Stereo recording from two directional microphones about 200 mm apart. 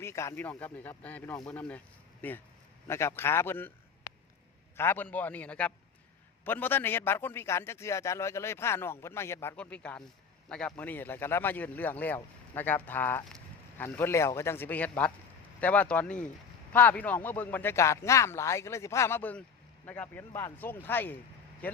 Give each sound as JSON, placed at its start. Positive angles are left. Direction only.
{"t": 0.0, "sound": "speech", "side_deg": 15}
{"t": 4.1, "sound": "a sound", "side_deg": 50}
{"t": 4.8, "sound": "speech", "side_deg": 10}